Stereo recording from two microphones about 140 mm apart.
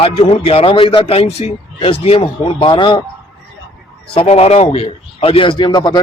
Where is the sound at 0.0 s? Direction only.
45° left (ahead or behind).